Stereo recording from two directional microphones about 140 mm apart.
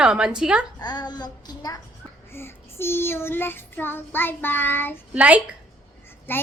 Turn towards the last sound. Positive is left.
turn(degrees=15)  # may be behind; listen again after turning